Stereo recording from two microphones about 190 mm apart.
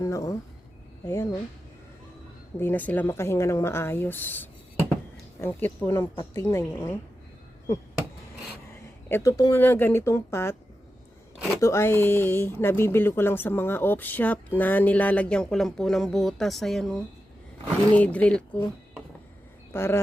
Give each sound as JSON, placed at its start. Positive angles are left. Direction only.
{"t": 0.0, "sound": "speech", "side_deg": 15}
{"t": 2.6, "sound": "speech", "side_deg": 10}
{"t": 9.0, "sound": "speech", "side_deg": 15}
{"t": 11.6, "sound": "speech", "side_deg": 15}
{"t": 19.7, "sound": "speech", "side_deg": 15}